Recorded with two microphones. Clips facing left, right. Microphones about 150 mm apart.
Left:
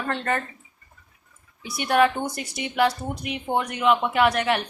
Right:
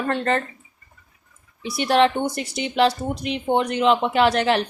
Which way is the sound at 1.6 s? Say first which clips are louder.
Right 2 dB; 25° right (ahead or behind).